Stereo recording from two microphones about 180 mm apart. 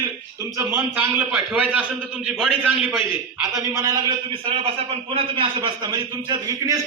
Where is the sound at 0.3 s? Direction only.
15° right (ahead or behind).